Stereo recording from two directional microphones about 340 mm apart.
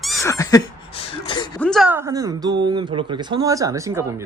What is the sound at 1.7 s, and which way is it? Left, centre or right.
Speech, centre.